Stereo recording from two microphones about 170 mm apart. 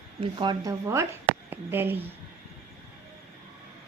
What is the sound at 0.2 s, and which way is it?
Speech, 30° right (ahead or behind).